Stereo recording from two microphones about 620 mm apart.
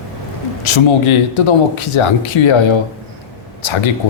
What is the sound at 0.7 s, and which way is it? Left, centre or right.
Speech, left.